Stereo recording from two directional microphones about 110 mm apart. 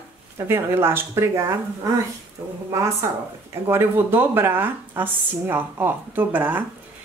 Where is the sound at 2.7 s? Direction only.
25° right (ahead or behind).